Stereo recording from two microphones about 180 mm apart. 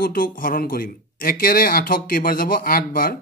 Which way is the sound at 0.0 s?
55° left (ahead or behind).